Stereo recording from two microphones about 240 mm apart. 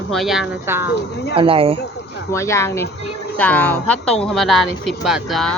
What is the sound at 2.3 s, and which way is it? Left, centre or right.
A woman's voice, centre.